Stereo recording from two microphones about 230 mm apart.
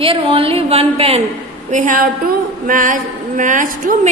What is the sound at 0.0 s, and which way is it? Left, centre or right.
A woman's voice, right.